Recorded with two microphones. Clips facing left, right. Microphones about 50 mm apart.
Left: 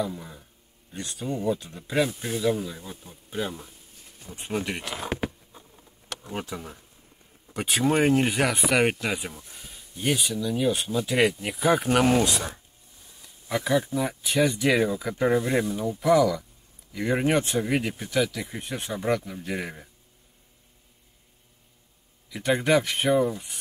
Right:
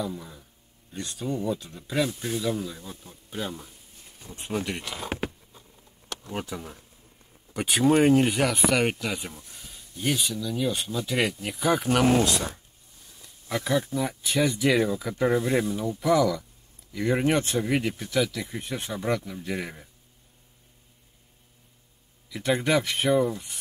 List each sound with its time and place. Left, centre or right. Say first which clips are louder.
0.0 s speech: left 2 dB; centre
5.5 s a sound: left 2 dB; centre
6.3 s speech: even; centre
22.3 s speech: left 2 dB; centre